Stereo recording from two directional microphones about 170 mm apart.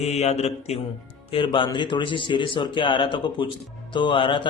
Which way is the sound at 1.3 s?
30° left (ahead or behind).